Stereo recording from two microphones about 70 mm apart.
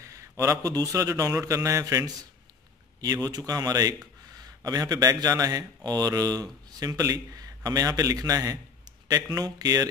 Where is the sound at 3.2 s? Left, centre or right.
Right.